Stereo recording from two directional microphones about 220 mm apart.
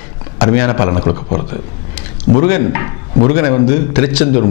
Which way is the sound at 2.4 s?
15° left (ahead or behind).